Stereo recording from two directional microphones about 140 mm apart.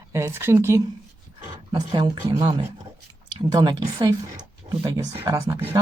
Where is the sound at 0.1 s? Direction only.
20° right (ahead or behind).